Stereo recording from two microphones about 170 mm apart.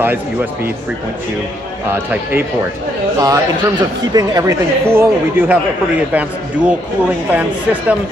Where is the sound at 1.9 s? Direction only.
10° right (ahead or behind).